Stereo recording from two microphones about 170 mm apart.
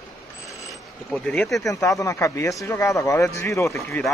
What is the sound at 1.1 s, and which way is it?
Speech, 5° left (ahead or behind).